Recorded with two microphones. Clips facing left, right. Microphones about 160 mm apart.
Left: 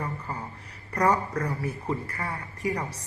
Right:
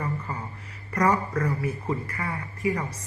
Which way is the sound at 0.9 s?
30° left (ahead or behind).